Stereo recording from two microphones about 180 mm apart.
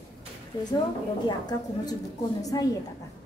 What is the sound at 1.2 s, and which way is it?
A woman's voice, 25° left (ahead or behind).